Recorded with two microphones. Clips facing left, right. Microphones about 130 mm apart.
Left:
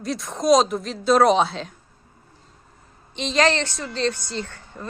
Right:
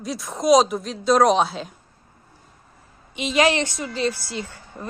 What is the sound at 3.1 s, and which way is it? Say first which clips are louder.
A woman's voice: right 1 dB; 10° right (ahead or behind).